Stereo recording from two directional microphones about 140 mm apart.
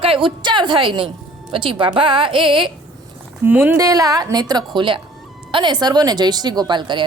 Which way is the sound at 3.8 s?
25° right (ahead or behind).